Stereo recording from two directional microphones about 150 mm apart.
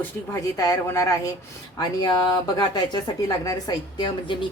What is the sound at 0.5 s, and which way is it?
Speech, 25° left (ahead or behind).